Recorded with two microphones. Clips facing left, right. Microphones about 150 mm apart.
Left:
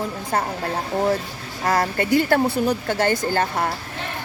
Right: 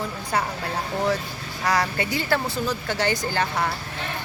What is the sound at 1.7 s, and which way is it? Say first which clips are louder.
A woman's voice: left 4 dB; 50° left (ahead or behind).